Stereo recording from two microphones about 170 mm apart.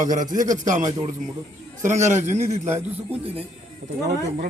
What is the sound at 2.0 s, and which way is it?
Speech, 45° right (ahead or behind).